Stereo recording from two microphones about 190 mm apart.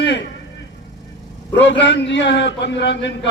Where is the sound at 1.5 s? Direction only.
70° left (ahead or behind).